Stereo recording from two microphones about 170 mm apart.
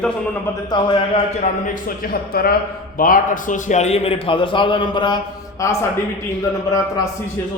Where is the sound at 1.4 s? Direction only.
55° left (ahead or behind); by 5.8 s 20° left (ahead or behind).